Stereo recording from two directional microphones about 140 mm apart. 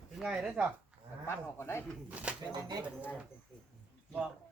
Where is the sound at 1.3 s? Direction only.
20° left (ahead or behind).